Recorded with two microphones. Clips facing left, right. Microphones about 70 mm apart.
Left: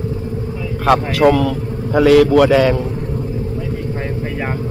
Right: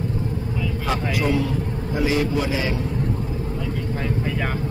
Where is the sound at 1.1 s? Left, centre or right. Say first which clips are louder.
Left 9 dB; left.